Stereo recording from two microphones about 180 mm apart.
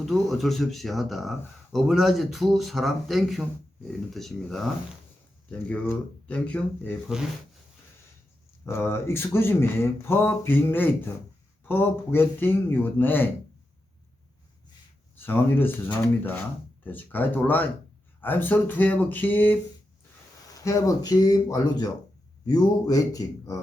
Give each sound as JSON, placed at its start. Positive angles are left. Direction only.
{"t": 0.0, "sound": "speech", "side_deg": 0}
{"t": 8.6, "sound": "speech", "side_deg": 15}
{"t": 15.3, "sound": "speech", "side_deg": 10}
{"t": 16.8, "sound": "speech", "side_deg": 10}
{"t": 20.7, "sound": "speech", "side_deg": 15}